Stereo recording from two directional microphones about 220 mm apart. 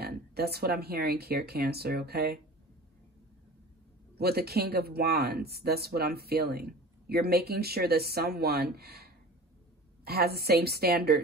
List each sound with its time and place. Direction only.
0.0 s speech: 45° right (ahead or behind)
4.2 s speech: 45° right (ahead or behind)